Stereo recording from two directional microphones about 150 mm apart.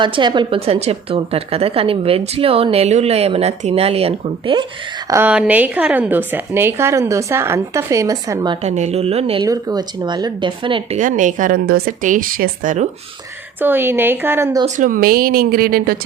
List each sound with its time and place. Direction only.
0.0 s a woman's voice: 30° right (ahead or behind)
5.0 s a woman's voice: 15° right (ahead or behind)
8.6 s speech: 50° right (ahead or behind)
9.4 s speech: 25° right (ahead or behind)
10.9 s a woman's voice: 55° right (ahead or behind)
13.6 s a woman's voice: 15° right (ahead or behind)
14.8 s speech: 65° right (ahead or behind)